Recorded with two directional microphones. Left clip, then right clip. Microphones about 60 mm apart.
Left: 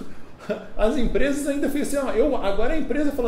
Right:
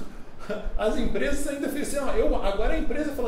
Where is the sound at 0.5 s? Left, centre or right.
Left.